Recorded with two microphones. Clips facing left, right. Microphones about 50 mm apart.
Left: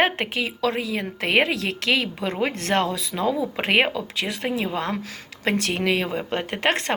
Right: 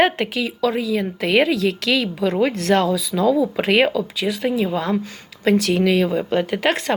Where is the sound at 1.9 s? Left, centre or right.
Left.